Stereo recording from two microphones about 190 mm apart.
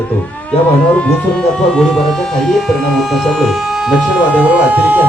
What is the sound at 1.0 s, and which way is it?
Speech, 5° left (ahead or behind).